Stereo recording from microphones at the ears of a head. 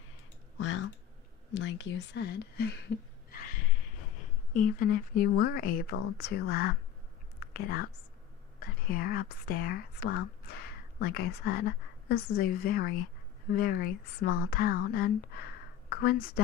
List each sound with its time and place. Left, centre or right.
0.5 s speech: left